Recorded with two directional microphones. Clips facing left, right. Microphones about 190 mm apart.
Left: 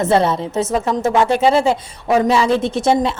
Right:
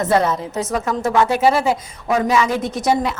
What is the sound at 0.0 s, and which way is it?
A woman's voice, 25° left (ahead or behind).